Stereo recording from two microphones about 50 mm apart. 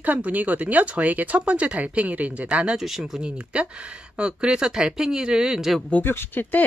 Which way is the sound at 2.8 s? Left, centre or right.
Centre.